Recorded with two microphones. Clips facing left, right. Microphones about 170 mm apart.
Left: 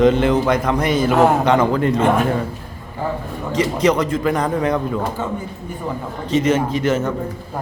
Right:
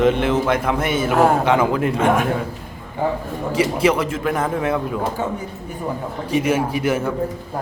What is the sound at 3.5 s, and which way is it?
A man's voice, 10° right (ahead or behind).